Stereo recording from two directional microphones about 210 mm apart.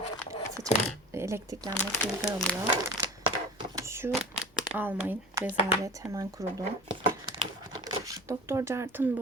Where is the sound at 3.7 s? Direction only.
15° right (ahead or behind).